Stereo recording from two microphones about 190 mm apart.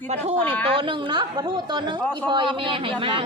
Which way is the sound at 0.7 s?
25° right (ahead or behind).